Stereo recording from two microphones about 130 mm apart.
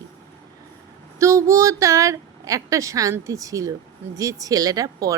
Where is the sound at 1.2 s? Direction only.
25° right (ahead or behind).